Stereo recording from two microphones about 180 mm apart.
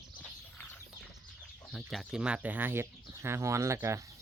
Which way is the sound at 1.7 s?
Centre (ahead or behind).